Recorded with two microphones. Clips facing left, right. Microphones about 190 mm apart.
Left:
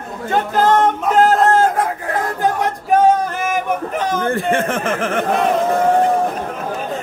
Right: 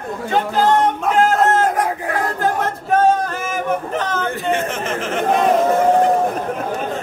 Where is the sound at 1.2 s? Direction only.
30° left (ahead or behind).